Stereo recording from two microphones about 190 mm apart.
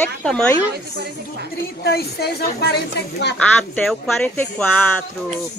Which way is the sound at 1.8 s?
60° left (ahead or behind).